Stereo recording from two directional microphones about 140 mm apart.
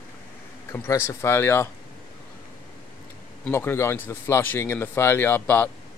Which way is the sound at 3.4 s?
15° left (ahead or behind).